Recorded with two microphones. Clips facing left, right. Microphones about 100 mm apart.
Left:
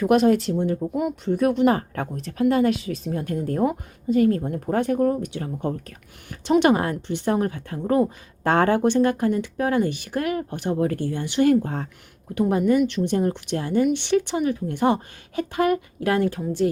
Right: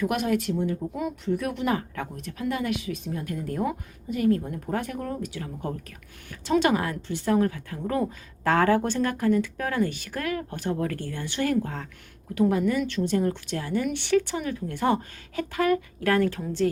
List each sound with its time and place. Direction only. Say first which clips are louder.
0.0 s speech: left 8 dB; 30° left (ahead or behind)
11.6 s speech: left 5 dB; 30° left (ahead or behind); by 16.6 s 15° left (ahead or behind)